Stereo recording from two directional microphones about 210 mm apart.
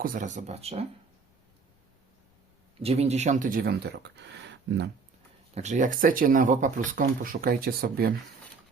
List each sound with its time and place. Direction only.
0.0 s speech: 40° right (ahead or behind)
2.7 s speech: 30° right (ahead or behind); by 4.9 s 55° right (ahead or behind)
5.5 s speech: 35° right (ahead or behind)